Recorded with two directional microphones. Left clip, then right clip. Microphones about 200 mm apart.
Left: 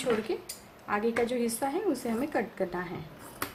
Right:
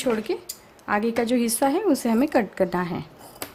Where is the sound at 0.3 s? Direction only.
55° right (ahead or behind).